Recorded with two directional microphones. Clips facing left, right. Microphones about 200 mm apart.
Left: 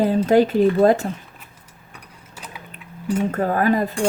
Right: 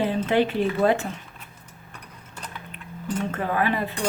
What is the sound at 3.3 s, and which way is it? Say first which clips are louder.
Speech: left 6 dB; 40° left (ahead or behind).